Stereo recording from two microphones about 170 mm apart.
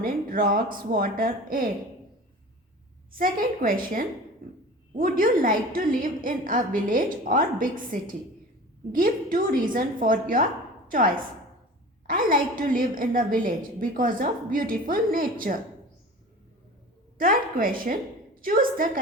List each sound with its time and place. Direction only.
0.0 s a woman's voice: 55° right (ahead or behind)
3.1 s a woman's voice: 55° right (ahead or behind)
4.9 s a woman's voice: 55° right (ahead or behind)
17.2 s a woman's voice: 55° right (ahead or behind)